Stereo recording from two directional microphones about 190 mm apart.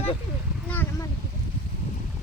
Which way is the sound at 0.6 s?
10° left (ahead or behind).